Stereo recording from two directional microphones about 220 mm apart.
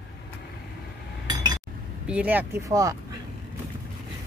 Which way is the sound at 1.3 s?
15° right (ahead or behind).